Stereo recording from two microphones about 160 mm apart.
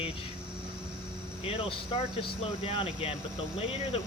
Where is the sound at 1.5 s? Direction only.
35° left (ahead or behind).